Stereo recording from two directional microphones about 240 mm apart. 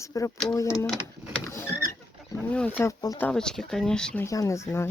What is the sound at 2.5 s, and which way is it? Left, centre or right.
Speech, centre.